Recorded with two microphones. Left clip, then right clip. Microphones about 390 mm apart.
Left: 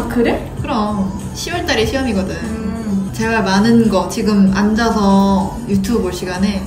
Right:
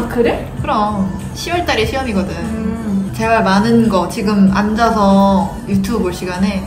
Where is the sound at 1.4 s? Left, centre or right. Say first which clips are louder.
Right 1 dB; centre.